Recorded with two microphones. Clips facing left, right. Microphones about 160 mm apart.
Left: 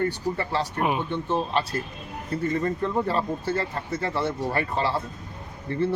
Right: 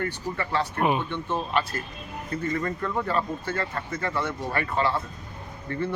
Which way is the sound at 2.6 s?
25° left (ahead or behind).